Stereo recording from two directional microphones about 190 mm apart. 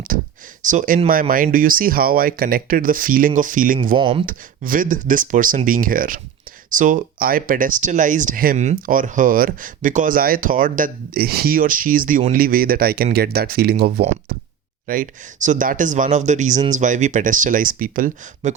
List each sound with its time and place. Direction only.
0.6 s speech: 40° right (ahead or behind)
3.9 s speech: 25° right (ahead or behind)
4.3 s speech: 45° right (ahead or behind)
14.8 s speech: 45° right (ahead or behind)